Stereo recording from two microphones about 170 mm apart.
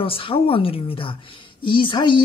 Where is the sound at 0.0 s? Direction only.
30° left (ahead or behind).